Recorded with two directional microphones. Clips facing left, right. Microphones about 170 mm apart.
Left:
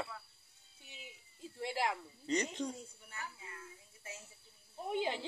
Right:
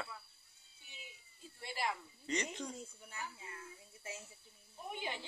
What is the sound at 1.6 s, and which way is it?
Speech, 90° left.